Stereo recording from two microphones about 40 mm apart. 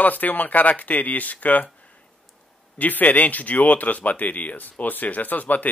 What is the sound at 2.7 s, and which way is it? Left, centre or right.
Speech, left.